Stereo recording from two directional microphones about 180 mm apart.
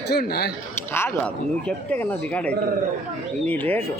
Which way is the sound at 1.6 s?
10° left (ahead or behind).